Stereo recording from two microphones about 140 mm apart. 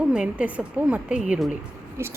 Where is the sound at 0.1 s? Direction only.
10° right (ahead or behind).